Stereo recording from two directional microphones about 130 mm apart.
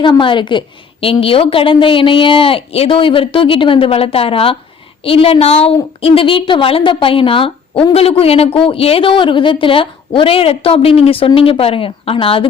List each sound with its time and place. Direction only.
0.0 s a woman's voice: 40° left (ahead or behind)